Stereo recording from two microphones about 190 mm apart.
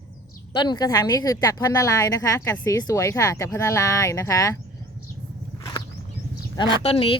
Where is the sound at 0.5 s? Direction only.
25° left (ahead or behind).